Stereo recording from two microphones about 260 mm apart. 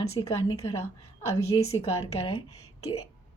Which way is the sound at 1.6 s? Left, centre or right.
Left.